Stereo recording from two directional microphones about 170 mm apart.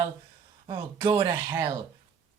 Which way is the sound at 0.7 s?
30° right (ahead or behind).